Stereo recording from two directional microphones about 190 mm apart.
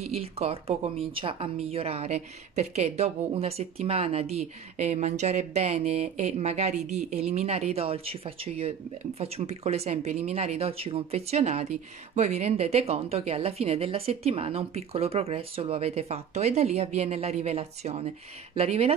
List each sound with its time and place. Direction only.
0.0 s a woman's voice: 30° right (ahead or behind)